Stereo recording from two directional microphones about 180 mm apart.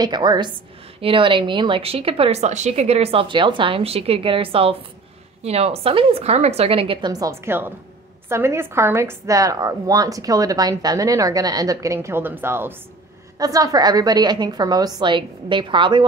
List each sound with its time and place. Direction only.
0.0 s a woman's voice: 25° right (ahead or behind)